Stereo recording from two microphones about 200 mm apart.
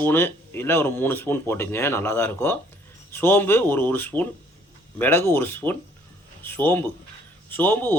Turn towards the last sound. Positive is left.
turn(degrees=10)  # may be behind; listen again after turning